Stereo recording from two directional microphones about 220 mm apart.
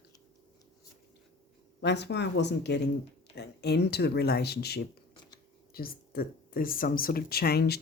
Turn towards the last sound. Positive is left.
turn(degrees=45)  # may be behind; listen again after turning